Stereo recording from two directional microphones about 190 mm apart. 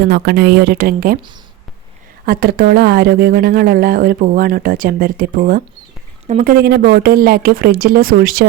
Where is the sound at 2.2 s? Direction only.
50° right (ahead or behind).